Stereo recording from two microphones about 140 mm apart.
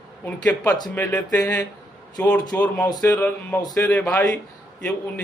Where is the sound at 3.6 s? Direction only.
25° left (ahead or behind).